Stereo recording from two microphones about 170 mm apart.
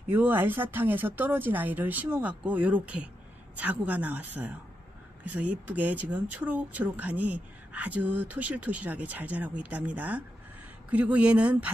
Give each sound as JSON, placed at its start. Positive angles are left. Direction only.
{"t": 0.1, "sound": "speech", "side_deg": -10}